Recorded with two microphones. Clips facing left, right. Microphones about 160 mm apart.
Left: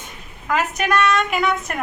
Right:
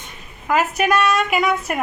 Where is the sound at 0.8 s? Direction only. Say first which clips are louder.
Left 1 dB; 5° right (ahead or behind).